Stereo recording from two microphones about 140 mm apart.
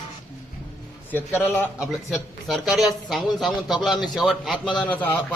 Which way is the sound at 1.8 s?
Centre (ahead or behind).